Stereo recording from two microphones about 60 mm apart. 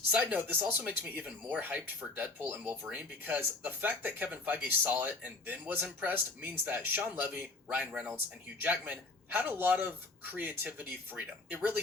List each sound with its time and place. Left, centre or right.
0.1 s speech: right